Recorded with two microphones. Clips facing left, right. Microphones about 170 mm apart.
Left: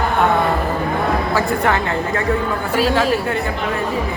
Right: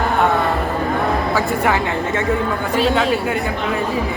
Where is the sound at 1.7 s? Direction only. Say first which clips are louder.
Even; 20° right (ahead or behind).